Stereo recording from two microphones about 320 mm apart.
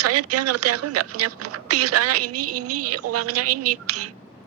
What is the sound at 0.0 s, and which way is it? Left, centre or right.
Speech, right.